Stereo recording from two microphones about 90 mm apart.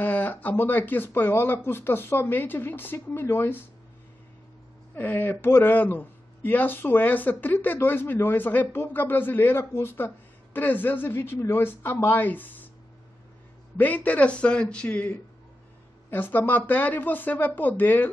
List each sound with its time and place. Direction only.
0.0 s speech: 20° left (ahead or behind)
4.9 s speech: 20° left (ahead or behind)
13.7 s a man's voice: 20° left (ahead or behind)